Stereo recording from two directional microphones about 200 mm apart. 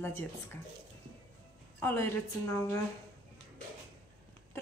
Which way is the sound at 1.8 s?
10° left (ahead or behind).